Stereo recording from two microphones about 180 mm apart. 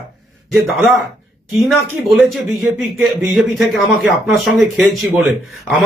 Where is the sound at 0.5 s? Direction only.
Centre (ahead or behind).